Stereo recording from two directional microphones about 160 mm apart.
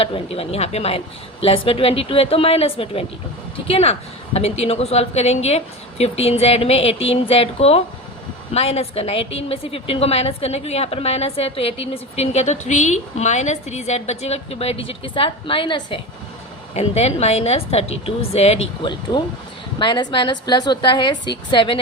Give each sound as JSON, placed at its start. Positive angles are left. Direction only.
{"t": 0.0, "sound": "a woman's voice", "side_deg": 35}
{"t": 16.7, "sound": "a woman's voice", "side_deg": 40}